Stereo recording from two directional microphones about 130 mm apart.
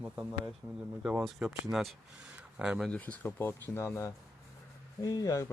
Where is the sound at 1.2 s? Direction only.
5° right (ahead or behind).